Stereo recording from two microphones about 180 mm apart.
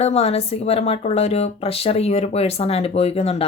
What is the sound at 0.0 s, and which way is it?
Speech, 35° left (ahead or behind).